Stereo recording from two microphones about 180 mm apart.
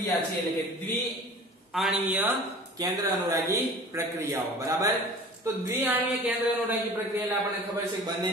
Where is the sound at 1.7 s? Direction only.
5° right (ahead or behind).